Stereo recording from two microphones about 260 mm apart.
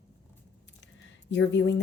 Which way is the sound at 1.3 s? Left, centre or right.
Left.